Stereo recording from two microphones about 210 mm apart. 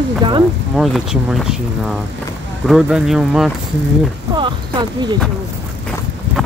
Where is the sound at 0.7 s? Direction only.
Centre (ahead or behind).